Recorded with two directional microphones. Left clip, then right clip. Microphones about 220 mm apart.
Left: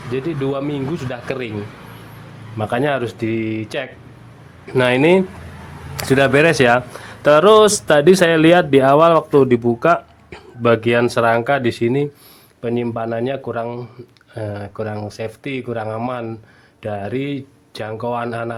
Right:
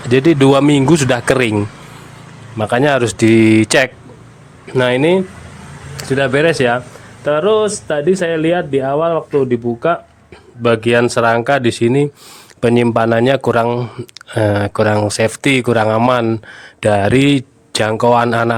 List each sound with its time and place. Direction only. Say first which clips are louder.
0.1 s speech: right 12 dB; 35° right (ahead or behind)
2.6 s speech: right 6 dB; 15° right (ahead or behind); by 3.8 s 35° right (ahead or behind)
4.6 s speech: right 1 dB; 10° right (ahead or behind)
6.0 s speech: even; 5° left (ahead or behind)
7.3 s speech: left 3 dB; 10° left (ahead or behind); by 12.0 s 15° right (ahead or behind)
12.6 s speech: right 9 dB; 30° right (ahead or behind)